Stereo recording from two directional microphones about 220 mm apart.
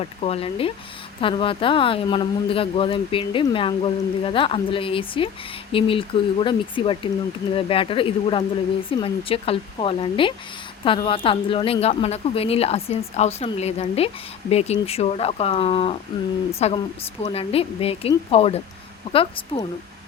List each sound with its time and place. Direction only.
0.0 s speech: 25° left (ahead or behind)